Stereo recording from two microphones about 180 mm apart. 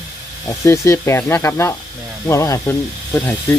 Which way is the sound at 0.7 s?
15° left (ahead or behind).